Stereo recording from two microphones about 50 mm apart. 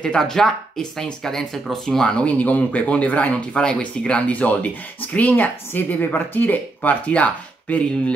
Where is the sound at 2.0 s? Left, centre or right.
Centre.